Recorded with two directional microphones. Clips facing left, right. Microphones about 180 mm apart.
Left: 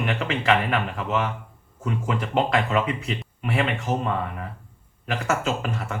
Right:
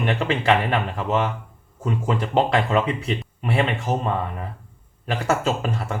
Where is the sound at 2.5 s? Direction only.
30° right (ahead or behind).